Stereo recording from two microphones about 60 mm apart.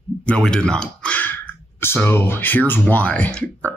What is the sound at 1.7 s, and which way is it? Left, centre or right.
Speech, left.